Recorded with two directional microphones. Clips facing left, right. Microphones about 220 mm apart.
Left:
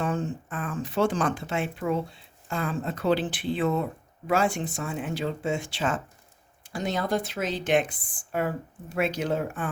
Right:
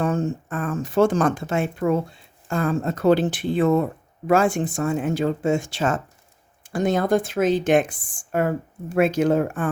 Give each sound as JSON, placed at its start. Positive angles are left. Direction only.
{"t": 0.0, "sound": "speech", "side_deg": -45}